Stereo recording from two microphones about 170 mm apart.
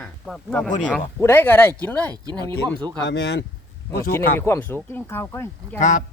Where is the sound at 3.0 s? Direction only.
80° left.